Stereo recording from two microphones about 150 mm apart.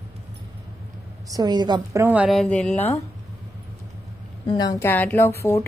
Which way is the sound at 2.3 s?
5° left (ahead or behind).